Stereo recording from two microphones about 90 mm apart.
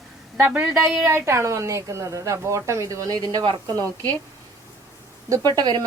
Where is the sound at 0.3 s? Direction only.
15° right (ahead or behind).